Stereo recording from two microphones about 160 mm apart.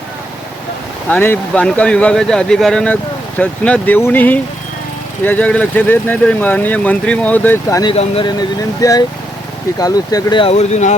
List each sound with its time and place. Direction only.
1.0 s speech: 10° left (ahead or behind)
7.9 s speech: 35° left (ahead or behind)
8.4 s speech: 25° left (ahead or behind); by 10.9 s 45° left (ahead or behind)